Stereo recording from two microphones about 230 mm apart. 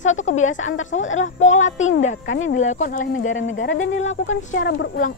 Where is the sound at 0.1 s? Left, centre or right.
Left.